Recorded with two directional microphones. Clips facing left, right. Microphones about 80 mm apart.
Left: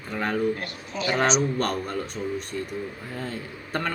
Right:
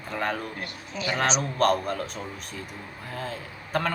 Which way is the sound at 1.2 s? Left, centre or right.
Centre.